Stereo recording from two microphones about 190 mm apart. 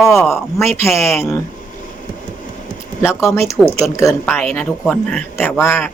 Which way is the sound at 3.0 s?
15° left (ahead or behind).